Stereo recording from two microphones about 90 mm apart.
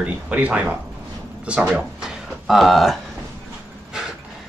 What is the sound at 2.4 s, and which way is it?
Speech, centre (ahead or behind).